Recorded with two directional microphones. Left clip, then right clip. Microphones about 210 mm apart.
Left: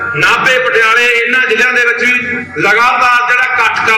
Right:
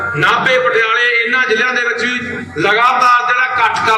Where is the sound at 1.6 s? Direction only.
50° right (ahead or behind).